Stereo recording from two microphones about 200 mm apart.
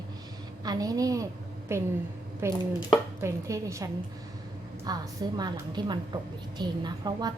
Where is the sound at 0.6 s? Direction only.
20° right (ahead or behind).